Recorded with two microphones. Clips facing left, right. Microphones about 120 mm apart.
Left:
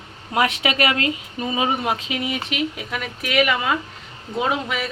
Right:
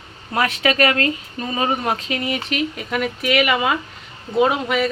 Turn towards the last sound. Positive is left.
turn(degrees=0)  # may be behind; listen again after turning